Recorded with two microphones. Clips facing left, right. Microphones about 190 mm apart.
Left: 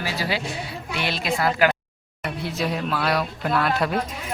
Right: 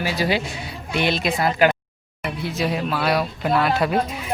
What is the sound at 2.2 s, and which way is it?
Speech, centre (ahead or behind).